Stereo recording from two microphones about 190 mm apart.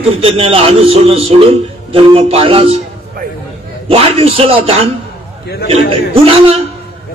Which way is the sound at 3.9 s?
30° right (ahead or behind).